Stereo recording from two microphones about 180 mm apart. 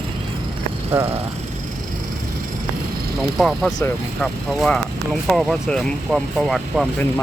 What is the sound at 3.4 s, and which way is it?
Speech, centre (ahead or behind).